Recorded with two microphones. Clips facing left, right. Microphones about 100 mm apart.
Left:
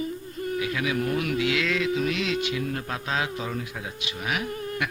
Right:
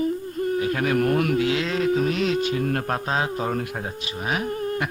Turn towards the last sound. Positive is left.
turn(degrees=-35)  # may be behind; listen again after turning